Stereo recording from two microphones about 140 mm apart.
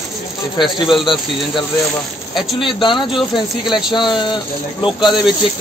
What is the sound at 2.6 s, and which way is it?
Speech, 35° left (ahead or behind).